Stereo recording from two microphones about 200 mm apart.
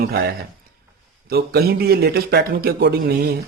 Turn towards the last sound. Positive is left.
turn(degrees=-50)  # may be behind; listen again after turning